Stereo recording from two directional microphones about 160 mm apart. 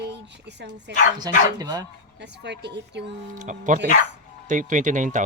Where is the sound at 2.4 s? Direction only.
90° right.